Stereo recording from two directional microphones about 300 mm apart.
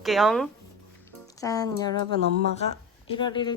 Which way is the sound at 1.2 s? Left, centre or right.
Centre.